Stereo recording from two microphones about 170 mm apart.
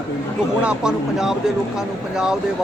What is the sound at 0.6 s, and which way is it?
A man's voice, 5° right (ahead or behind).